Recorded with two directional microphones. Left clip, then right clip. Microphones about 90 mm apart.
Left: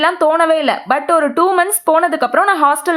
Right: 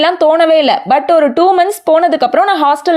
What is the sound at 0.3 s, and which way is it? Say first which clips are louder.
Speech: right 4 dB; 35° right (ahead or behind).